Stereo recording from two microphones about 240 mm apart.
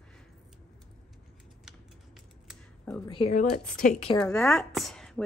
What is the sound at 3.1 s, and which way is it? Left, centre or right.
A woman's voice, left.